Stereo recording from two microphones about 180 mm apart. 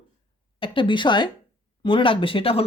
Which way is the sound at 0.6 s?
25° left (ahead or behind).